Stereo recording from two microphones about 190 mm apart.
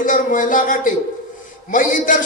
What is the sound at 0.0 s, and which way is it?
A man's voice, 45° left (ahead or behind).